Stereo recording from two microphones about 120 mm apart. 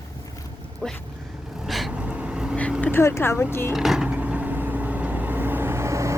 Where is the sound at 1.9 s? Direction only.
10° right (ahead or behind).